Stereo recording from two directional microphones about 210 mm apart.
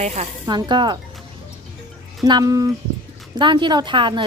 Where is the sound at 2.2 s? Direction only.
15° right (ahead or behind).